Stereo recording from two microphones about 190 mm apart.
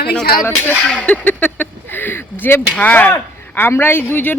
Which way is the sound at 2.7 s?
10° left (ahead or behind).